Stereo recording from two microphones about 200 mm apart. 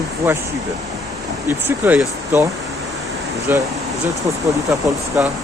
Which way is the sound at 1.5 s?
10° right (ahead or behind).